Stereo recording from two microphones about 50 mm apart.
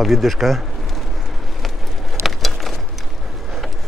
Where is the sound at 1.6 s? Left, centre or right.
Centre.